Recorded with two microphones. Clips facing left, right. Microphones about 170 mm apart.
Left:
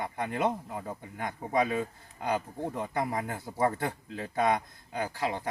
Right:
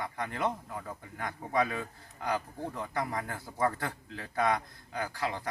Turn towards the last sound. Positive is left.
turn(degrees=20)  # may be behind; listen again after turning